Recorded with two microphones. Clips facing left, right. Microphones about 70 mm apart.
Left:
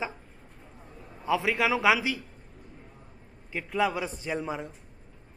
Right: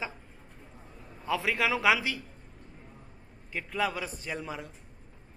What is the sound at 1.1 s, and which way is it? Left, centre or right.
A man's voice, centre.